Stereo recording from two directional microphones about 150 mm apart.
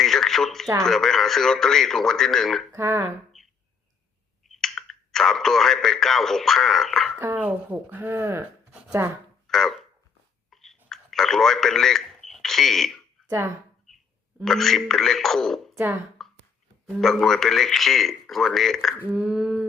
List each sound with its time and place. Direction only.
0.0 s radio: centre (ahead or behind)
0.8 s speech: centre (ahead or behind)
2.7 s speech: 15° right (ahead or behind)
3.3 s a sound: centre (ahead or behind)
4.4 s speech: centre (ahead or behind)
7.2 s speech: 15° right (ahead or behind)
9.5 s speech: centre (ahead or behind)
10.5 s chewing: centre (ahead or behind)
10.8 s a sound: centre (ahead or behind)
14.4 s speech: centre (ahead or behind)
16.2 s beatboxing: centre (ahead or behind)
16.8 s speech: centre (ahead or behind)